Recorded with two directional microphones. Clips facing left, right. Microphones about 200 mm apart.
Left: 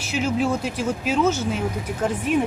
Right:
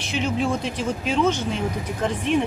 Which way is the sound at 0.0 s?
5° left (ahead or behind).